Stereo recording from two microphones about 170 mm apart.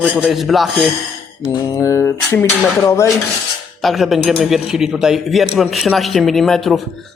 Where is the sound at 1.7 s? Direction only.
15° left (ahead or behind).